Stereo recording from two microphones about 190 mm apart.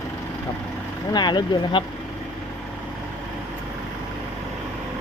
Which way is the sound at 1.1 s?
25° left (ahead or behind).